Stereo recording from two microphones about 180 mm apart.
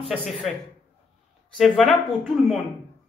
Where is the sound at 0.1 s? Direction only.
5° left (ahead or behind).